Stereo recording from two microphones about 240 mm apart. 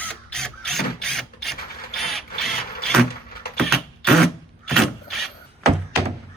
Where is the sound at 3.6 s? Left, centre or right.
Centre.